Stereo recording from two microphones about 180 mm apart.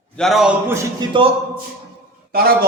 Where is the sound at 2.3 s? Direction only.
55° right (ahead or behind).